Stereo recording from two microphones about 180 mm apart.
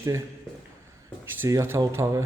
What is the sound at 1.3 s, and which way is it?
Speech, 15° right (ahead or behind).